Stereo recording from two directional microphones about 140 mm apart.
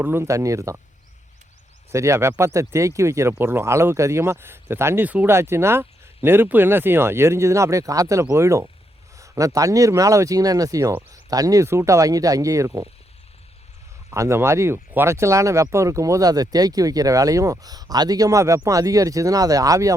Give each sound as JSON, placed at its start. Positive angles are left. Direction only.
{"t": 0.0, "sound": "speech", "side_deg": -15}
{"t": 1.9, "sound": "speech", "side_deg": -20}
{"t": 14.1, "sound": "speech", "side_deg": -20}